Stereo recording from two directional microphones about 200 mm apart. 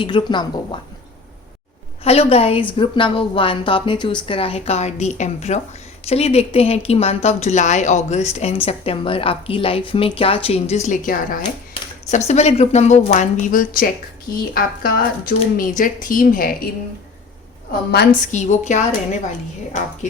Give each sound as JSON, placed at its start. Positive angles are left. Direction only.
{"t": 0.0, "sound": "a woman's voice", "side_deg": 25}
{"t": 2.0, "sound": "a woman's voice", "side_deg": 30}
{"t": 18.2, "sound": "speech", "side_deg": 35}